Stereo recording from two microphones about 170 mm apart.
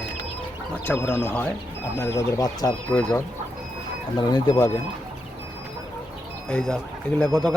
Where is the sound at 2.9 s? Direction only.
10° left (ahead or behind).